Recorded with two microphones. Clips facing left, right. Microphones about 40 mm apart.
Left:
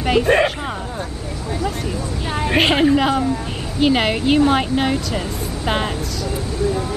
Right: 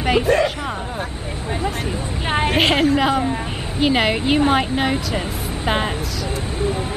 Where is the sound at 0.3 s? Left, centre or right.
Left.